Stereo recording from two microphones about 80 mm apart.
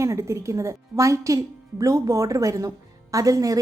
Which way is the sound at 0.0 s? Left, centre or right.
Right.